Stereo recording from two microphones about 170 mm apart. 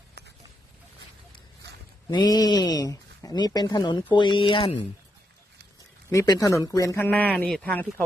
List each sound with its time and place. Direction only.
2.0 s speech: 25° left (ahead or behind)
6.1 s speech: 20° left (ahead or behind)